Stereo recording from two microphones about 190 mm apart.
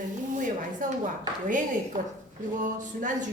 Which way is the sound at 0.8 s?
45° right (ahead or behind).